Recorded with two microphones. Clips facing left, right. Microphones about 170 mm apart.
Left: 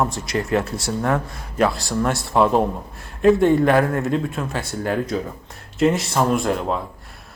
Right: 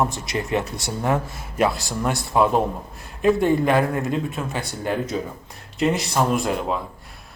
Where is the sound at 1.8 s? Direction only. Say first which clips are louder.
Left 3 dB; centre (ahead or behind).